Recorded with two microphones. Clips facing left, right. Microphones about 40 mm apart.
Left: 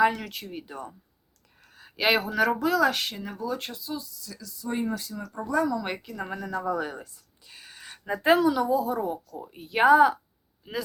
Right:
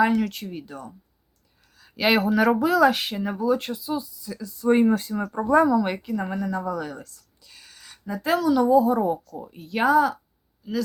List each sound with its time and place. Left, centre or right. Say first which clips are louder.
0.0 s a woman's voice: right 3 dB; centre
0.6 s speech: right 1 dB; centre
2.0 s a woman's voice: right 3 dB; centre
3.9 s speech: right 7 dB; centre
4.6 s speech: right 11 dB; right
5.7 s a woman's voice: right 8 dB; centre
6.6 s a sound: even; centre
8.0 s speech: left 1 dB; left
8.5 s a woman's voice: right 7 dB; centre
9.5 s speech: left 2 dB; centre